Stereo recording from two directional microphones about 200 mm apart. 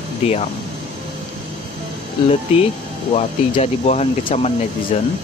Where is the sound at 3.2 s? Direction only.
30° left (ahead or behind).